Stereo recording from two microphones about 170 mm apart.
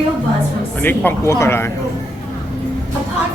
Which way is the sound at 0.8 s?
10° left (ahead or behind).